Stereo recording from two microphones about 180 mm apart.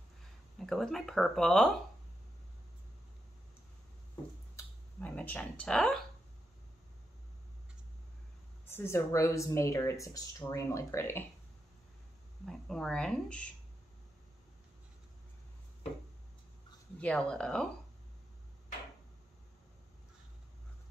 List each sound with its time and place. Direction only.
0.6 s speech: centre (ahead or behind)
4.6 s speech: 10° left (ahead or behind)
8.6 s speech: 15° left (ahead or behind)
12.4 s speech: centre (ahead or behind)
17.0 s speech: 5° left (ahead or behind)